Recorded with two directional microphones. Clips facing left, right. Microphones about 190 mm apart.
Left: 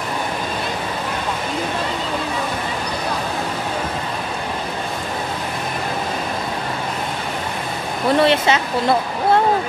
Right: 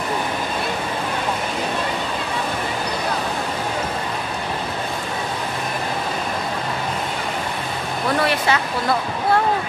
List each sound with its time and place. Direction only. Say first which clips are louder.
8.2 s speech: left 5 dB; 25° left (ahead or behind)